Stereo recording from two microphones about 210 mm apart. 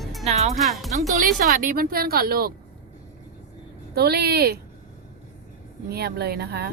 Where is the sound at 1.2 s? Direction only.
40° right (ahead or behind).